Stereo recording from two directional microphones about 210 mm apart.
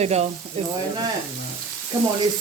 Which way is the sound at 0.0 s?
30° right (ahead or behind).